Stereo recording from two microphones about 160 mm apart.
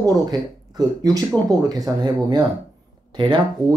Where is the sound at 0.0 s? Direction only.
25° right (ahead or behind).